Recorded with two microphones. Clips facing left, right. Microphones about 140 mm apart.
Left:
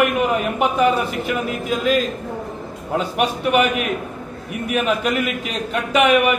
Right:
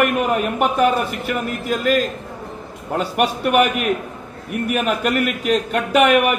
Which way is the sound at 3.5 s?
50° right (ahead or behind).